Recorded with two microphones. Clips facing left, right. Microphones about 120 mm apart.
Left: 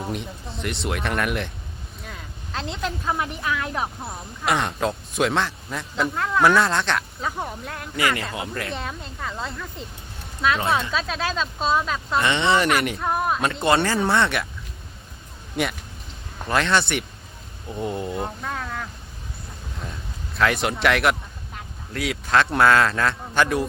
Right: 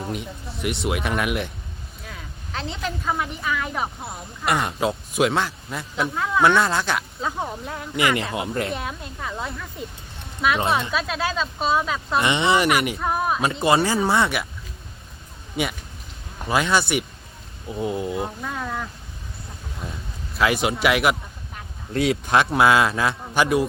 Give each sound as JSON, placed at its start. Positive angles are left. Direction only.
{"t": 0.0, "sound": "speech", "side_deg": 0}
{"t": 7.9, "sound": "speech", "side_deg": -20}
{"t": 8.7, "sound": "speech", "side_deg": -5}
{"t": 10.6, "sound": "speech", "side_deg": -20}
{"t": 10.9, "sound": "speech", "side_deg": -5}
{"t": 15.6, "sound": "a man's voice", "side_deg": 0}
{"t": 20.4, "sound": "speech", "side_deg": -5}
{"t": 21.9, "sound": "speech", "side_deg": -25}
{"t": 22.4, "sound": "a man's voice", "side_deg": -10}